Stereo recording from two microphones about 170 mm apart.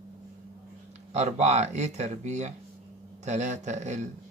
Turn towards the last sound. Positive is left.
turn(degrees=-45)  # may be behind; listen again after turning